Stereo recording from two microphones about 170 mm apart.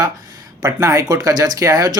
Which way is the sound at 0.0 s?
20° right (ahead or behind).